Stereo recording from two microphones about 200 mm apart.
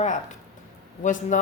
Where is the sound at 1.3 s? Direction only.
40° left (ahead or behind).